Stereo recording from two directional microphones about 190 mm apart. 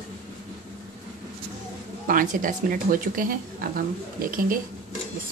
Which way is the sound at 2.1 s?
45° right (ahead or behind).